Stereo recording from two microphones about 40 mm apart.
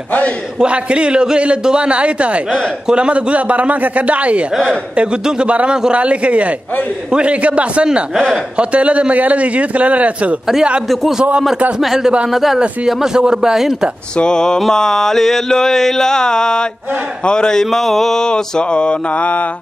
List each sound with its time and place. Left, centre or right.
0.6 s a man's voice: right
5.5 s a man's voice: right
11.8 s a man's voice: centre
12.5 s speech: centre
14.1 s mantra: centre
17.6 s mantra: centre; by 18.9 s left